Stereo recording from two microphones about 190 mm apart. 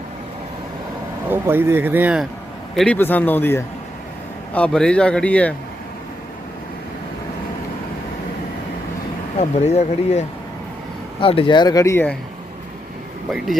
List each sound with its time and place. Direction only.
1.3 s speech: 10° right (ahead or behind)
2.7 s a man's voice: 5° left (ahead or behind)
9.4 s speech: 35° left (ahead or behind); by 12.1 s 15° left (ahead or behind)